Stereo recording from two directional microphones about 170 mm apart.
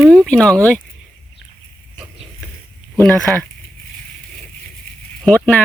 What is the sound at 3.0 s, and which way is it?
Speech, 10° left (ahead or behind).